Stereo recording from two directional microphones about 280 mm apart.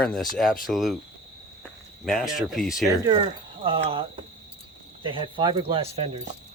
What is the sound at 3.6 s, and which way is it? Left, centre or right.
Speech, centre.